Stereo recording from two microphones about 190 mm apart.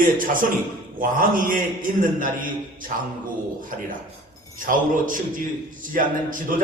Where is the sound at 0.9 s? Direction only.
45° right (ahead or behind).